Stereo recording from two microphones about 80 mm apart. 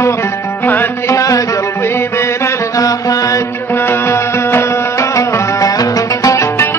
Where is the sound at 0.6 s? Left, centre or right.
Left.